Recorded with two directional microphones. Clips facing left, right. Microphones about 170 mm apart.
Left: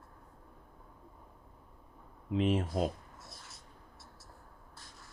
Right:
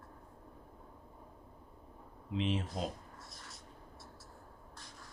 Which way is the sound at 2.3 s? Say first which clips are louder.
Left 5 dB; 50° left (ahead or behind).